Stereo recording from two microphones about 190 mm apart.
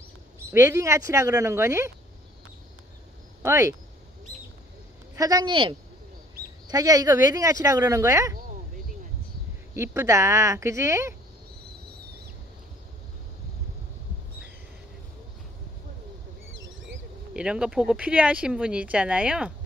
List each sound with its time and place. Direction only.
0.5 s speech: 15° right (ahead or behind)
3.4 s speech: 15° right (ahead or behind)
5.1 s speech: 20° right (ahead or behind)
9.8 s speech: 15° right (ahead or behind)
16.8 s speech: 5° right (ahead or behind)